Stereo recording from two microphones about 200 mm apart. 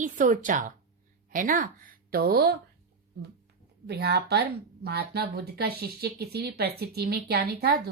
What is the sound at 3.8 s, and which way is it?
Speech, 55° right (ahead or behind).